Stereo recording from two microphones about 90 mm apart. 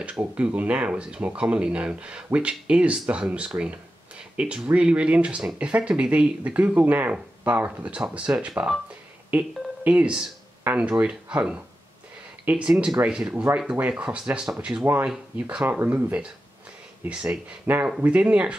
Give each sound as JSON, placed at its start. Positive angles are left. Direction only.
{"t": 0.4, "sound": "speech", "side_deg": -15}